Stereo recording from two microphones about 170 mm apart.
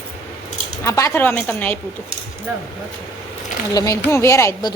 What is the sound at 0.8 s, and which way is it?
Speech, 15° left (ahead or behind).